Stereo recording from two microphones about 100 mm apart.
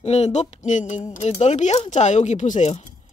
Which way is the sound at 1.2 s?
90° left.